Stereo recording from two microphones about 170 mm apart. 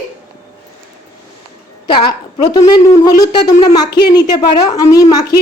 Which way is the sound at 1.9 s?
25° left (ahead or behind).